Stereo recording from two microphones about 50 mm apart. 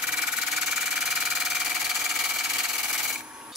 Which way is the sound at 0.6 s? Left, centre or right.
Centre.